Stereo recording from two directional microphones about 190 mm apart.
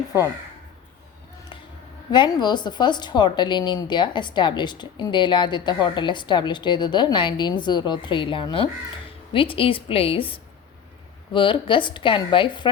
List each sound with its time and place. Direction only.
2.0 s a woman's voice: 25° left (ahead or behind)